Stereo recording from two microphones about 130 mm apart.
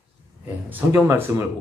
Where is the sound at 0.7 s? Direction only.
15° right (ahead or behind).